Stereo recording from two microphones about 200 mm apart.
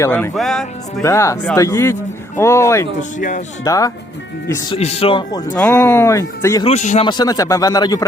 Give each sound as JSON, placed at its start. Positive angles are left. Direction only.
{"t": 0.0, "sound": "speech", "side_deg": 10}
{"t": 1.0, "sound": "speech", "side_deg": 15}
{"t": 3.0, "sound": "speech", "side_deg": 40}
{"t": 3.6, "sound": "speech", "side_deg": 15}
{"t": 4.8, "sound": "speech", "side_deg": 30}
{"t": 5.5, "sound": "speech", "side_deg": 10}
{"t": 6.7, "sound": "speech", "side_deg": 35}
{"t": 7.1, "sound": "speech", "side_deg": 20}